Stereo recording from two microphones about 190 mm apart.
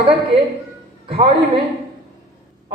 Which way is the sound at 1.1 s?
30° right (ahead or behind).